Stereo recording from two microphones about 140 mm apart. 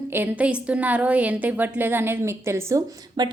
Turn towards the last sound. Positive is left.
turn(degrees=-30)  # may be behind; listen again after turning